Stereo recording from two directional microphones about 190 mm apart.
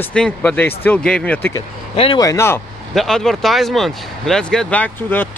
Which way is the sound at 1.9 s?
30° left (ahead or behind).